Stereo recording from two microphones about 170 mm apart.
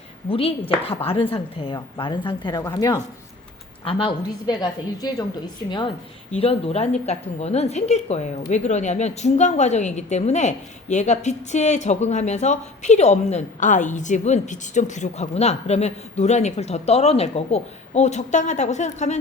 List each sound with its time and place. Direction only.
0.3 s a woman's voice: 35° left (ahead or behind)
6.3 s a woman's voice: 35° left (ahead or behind)